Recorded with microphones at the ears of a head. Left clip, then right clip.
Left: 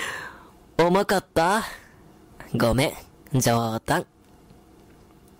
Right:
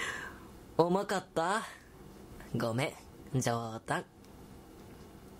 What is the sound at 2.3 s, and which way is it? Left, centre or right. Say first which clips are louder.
Speech: left 12 dB; left.